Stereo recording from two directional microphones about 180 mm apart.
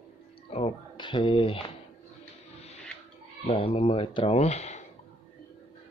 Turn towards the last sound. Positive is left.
turn(degrees=35)  # may be behind; listen again after turning